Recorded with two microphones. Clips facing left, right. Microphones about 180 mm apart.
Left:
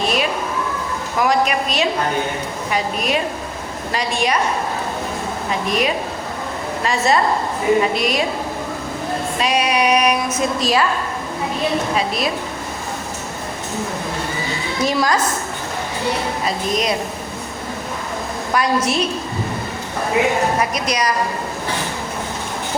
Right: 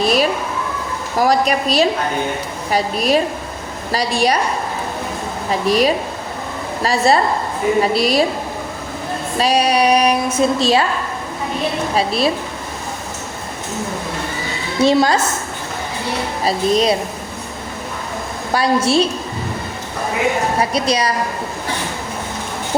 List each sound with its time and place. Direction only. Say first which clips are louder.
0.0 s a sound: right 4 dB; 35° right (ahead or behind)
1.1 s a woman's voice: right 2 dB; 35° right (ahead or behind)
5.5 s a woman's voice: right 5 dB; 35° right (ahead or behind)
9.4 s a woman's voice: right 4 dB; 35° right (ahead or behind)
11.9 s a woman's voice: right 4 dB; 30° right (ahead or behind)
14.8 s a woman's voice: right 5 dB; 30° right (ahead or behind)
16.4 s a woman's voice: right 5 dB; 30° right (ahead or behind)
18.5 s a woman's voice: right 4 dB; 30° right (ahead or behind)
20.6 s a woman's voice: right 3 dB; 30° right (ahead or behind)